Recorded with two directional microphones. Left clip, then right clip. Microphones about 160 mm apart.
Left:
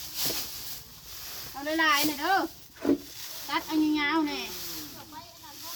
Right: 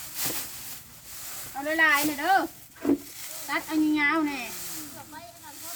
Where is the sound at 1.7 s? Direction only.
35° right (ahead or behind).